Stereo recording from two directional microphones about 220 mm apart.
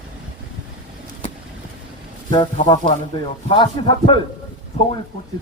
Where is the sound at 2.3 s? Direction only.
20° left (ahead or behind).